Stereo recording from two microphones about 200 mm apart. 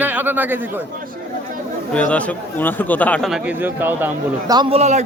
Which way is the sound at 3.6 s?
10° right (ahead or behind).